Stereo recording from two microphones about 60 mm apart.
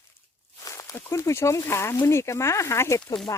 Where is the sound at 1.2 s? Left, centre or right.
Left.